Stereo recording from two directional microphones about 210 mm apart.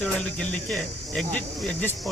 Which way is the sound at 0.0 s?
5° left (ahead or behind).